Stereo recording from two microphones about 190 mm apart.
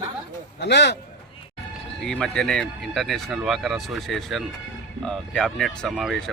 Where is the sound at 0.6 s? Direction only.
65° left (ahead or behind).